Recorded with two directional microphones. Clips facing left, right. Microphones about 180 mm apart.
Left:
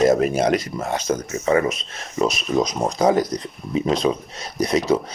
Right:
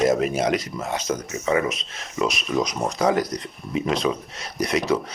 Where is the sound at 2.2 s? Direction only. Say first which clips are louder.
Left 3 dB; 35° left (ahead or behind).